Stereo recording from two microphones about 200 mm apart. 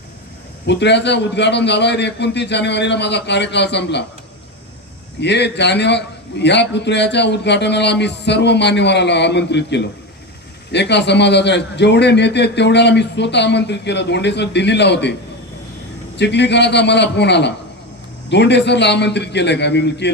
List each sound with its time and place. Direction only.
0.7 s a man's voice: 60° left (ahead or behind)
5.2 s a man's voice: 60° left (ahead or behind)
16.1 s a man's voice: 60° left (ahead or behind)